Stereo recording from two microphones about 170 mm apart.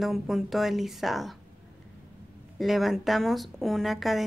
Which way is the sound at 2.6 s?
Centre (ahead or behind).